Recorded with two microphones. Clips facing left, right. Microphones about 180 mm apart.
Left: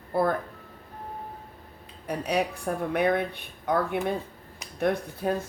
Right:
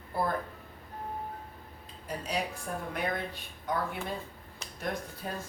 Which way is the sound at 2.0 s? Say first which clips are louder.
Left 7 dB; 65° left (ahead or behind).